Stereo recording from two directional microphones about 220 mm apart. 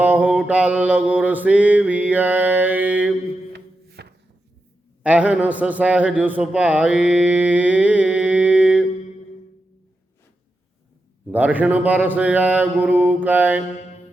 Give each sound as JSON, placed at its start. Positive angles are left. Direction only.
{"t": 0.0, "sound": "mantra", "side_deg": -5}
{"t": 3.5, "sound": "a sound", "side_deg": -45}
{"t": 5.0, "sound": "a man's voice", "side_deg": -5}
{"t": 11.3, "sound": "speech", "side_deg": -5}